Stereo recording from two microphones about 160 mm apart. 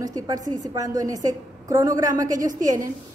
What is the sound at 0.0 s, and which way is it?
A woman's voice, 20° right (ahead or behind).